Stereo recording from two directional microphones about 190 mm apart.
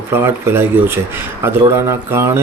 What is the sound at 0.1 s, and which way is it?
A man's voice, 10° right (ahead or behind).